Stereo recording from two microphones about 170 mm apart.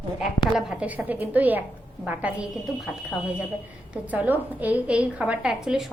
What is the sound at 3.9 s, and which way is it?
A woman's voice, 10° right (ahead or behind).